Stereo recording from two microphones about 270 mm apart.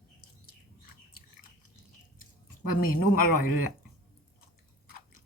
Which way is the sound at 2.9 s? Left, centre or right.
Left.